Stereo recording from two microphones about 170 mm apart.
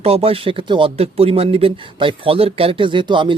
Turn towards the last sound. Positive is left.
turn(degrees=-30)  # may be behind; listen again after turning